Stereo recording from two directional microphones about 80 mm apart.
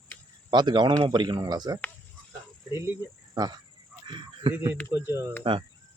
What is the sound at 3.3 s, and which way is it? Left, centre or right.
Speech, right.